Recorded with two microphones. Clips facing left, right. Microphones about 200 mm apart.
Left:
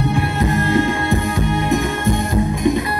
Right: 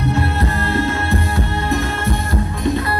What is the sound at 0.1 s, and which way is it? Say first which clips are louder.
Music: left 1 dB; 15° left (ahead or behind).